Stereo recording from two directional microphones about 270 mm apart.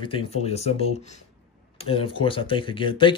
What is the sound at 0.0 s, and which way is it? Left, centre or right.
Speech, left.